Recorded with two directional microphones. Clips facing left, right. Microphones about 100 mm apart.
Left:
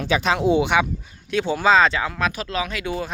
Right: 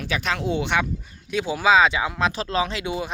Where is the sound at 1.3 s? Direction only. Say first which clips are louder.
Left 1 dB; 5° right (ahead or behind); by 2.9 s 25° right (ahead or behind).